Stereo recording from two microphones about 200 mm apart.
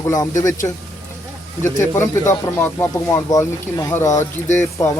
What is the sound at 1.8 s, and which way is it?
Speech, 15° left (ahead or behind).